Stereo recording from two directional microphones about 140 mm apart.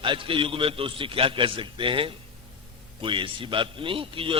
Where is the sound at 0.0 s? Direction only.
35° right (ahead or behind).